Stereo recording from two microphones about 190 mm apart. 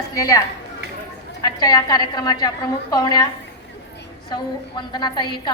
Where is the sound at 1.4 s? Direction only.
20° left (ahead or behind).